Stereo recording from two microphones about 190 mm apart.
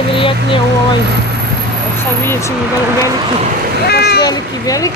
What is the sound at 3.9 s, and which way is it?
Speech, 60° left (ahead or behind).